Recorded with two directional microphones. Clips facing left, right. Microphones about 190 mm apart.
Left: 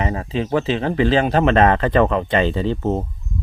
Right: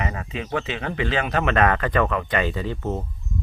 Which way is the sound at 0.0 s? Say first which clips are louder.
Left 7 dB; 30° left (ahead or behind).